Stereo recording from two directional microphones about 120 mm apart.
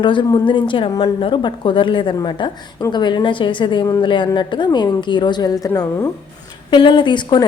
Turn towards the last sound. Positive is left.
turn(degrees=40)  # may be behind; listen again after turning